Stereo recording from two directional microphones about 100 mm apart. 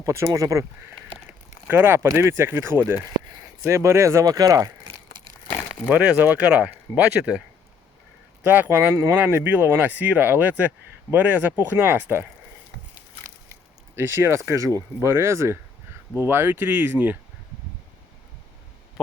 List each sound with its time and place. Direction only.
0.0 s speech: 30° right (ahead or behind)
1.6 s speech: 20° right (ahead or behind); by 4.9 s 35° right (ahead or behind)
5.9 s speech: 15° right (ahead or behind)
8.4 s speech: 20° right (ahead or behind)
13.9 s speech: 25° right (ahead or behind)